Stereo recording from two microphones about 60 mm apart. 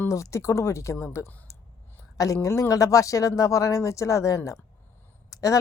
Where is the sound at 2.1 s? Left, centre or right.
Left.